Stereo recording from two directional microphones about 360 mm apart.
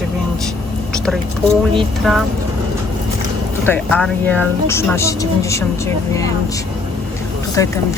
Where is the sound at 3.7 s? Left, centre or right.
Centre.